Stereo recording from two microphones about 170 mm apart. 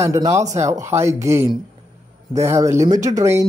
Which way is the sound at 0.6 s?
15° right (ahead or behind).